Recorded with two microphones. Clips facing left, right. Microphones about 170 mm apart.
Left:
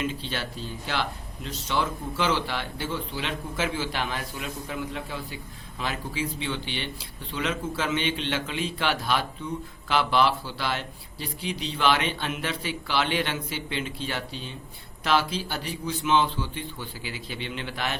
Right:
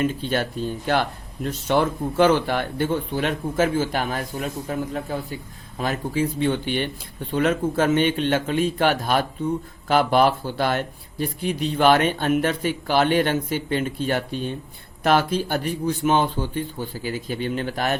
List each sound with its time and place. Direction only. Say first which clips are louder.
0.0 s speech: right 8 dB; 50° right (ahead or behind)